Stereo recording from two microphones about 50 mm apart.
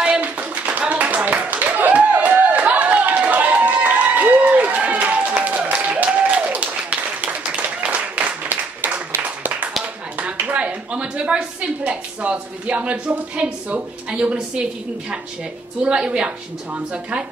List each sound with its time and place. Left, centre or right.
0.2 s clapping: right
10.1 s a sound: right
15.8 s a woman's voice: right